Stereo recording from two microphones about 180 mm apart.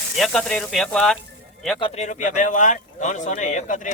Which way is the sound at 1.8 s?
40° left (ahead or behind).